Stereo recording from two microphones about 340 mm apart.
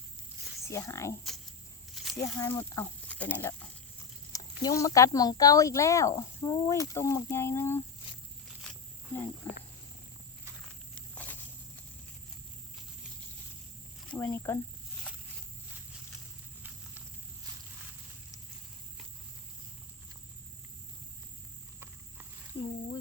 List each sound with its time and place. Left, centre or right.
0.7 s speech: centre
9.5 s speech: centre
14.1 s speech: centre
22.5 s speech: left